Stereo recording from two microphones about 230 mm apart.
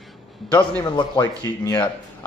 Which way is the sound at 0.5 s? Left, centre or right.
Centre.